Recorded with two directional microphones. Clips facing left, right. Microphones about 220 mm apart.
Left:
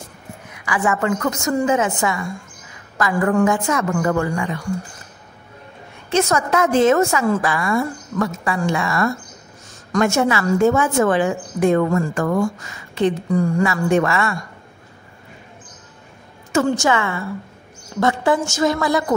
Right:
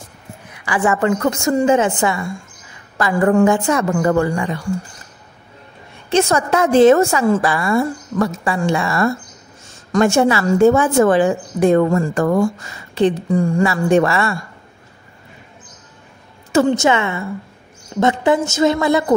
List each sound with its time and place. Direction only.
0.7 s a woman's voice: 30° right (ahead or behind)
6.0 s a woman's voice: 30° right (ahead or behind)
16.6 s a woman's voice: 20° right (ahead or behind)